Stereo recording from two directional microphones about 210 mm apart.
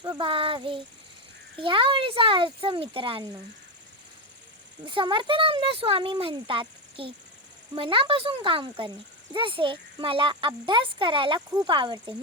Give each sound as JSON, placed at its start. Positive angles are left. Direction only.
{"t": 0.0, "sound": "speech", "side_deg": -25}
{"t": 4.9, "sound": "speech", "side_deg": -25}